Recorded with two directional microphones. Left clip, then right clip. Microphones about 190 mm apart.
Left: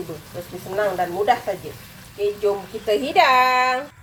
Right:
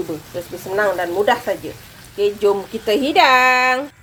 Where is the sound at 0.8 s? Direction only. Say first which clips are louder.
Right 3 dB; 60° right (ahead or behind).